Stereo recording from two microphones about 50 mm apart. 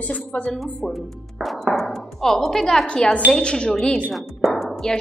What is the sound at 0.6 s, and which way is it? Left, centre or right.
Speech, centre.